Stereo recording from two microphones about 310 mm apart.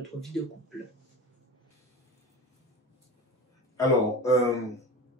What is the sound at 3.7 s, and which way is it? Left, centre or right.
Speech, centre.